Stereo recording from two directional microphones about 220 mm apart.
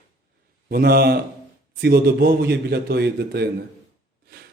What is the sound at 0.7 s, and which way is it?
Speech, 45° right (ahead or behind).